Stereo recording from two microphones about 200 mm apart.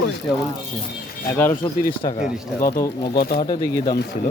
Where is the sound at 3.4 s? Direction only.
20° left (ahead or behind).